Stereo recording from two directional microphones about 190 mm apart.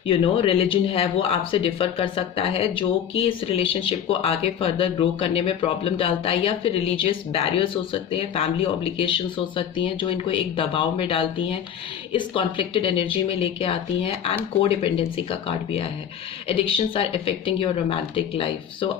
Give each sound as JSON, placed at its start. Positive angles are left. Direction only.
{"t": 0.1, "sound": "speech", "side_deg": 30}